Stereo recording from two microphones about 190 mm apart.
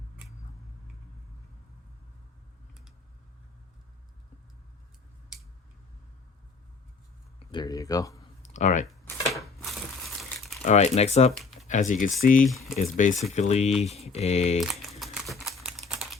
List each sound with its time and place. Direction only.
7.5 s speech: 20° left (ahead or behind)
8.4 s clicking: 40° left (ahead or behind)
9.3 s crushing: centre (ahead or behind)
10.6 s mantra: 35° left (ahead or behind)
11.3 s a sound: centre (ahead or behind)
11.7 s speech: 40° left (ahead or behind)
13.3 s mantra: 35° left (ahead or behind)
14.6 s typing: centre (ahead or behind)